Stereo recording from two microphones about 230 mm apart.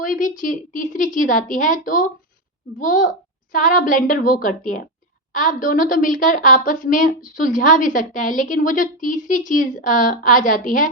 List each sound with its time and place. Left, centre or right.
0.0 s a woman's voice: left